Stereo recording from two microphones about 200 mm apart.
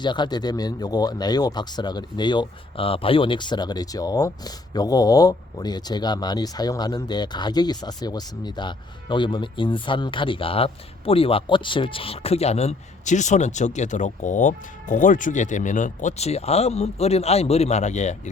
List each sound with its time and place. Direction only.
0.0 s speech: 20° left (ahead or behind)